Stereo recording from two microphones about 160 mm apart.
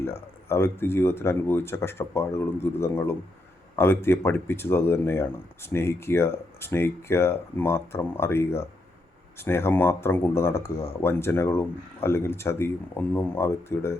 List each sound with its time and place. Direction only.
0.0 s speech: 15° left (ahead or behind)